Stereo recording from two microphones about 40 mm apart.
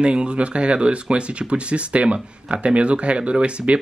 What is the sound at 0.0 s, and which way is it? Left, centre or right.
Speech, right.